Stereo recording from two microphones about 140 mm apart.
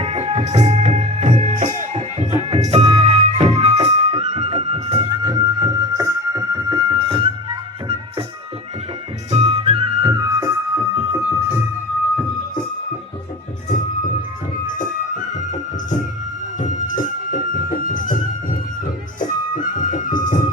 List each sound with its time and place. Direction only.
0.0 s music: 45° right (ahead or behind)
9.3 s music: 45° right (ahead or behind)
10.1 s music: 25° right (ahead or behind)
14.7 s music: 65° left (ahead or behind)
16.6 s music: 70° left (ahead or behind)
19.5 s music: 65° left (ahead or behind)